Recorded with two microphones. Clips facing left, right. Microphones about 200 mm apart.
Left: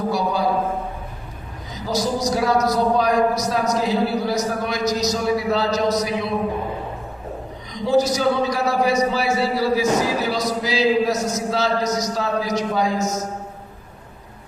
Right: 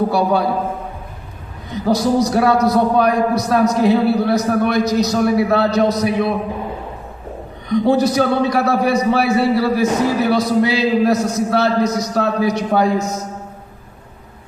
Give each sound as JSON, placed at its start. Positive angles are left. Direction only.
{"t": 0.1, "sound": "a man's voice", "side_deg": -60}
{"t": 1.7, "sound": "a man's voice", "side_deg": -60}
{"t": 7.7, "sound": "a man's voice", "side_deg": -60}